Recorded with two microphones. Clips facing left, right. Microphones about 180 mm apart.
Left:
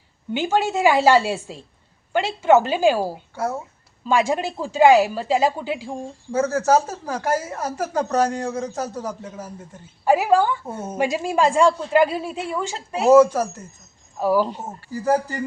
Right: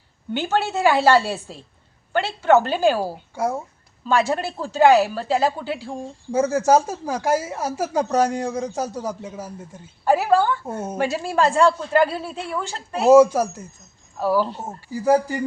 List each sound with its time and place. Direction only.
0.3 s a woman's voice: 10° left (ahead or behind)
3.3 s speech: 10° right (ahead or behind)
4.0 s a woman's voice: 10° left (ahead or behind)
6.3 s speech: 10° right (ahead or behind)
10.0 s a woman's voice: 10° left (ahead or behind)
13.1 s speech: 10° right (ahead or behind)
14.2 s a woman's voice: 10° left (ahead or behind)
14.8 s speech: 10° right (ahead or behind)